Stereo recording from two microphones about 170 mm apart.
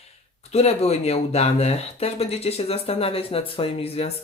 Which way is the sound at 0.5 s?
35° left (ahead or behind).